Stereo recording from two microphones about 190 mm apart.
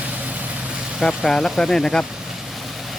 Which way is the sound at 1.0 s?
5° left (ahead or behind).